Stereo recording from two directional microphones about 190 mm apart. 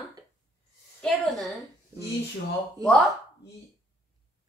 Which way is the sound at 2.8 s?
20° right (ahead or behind).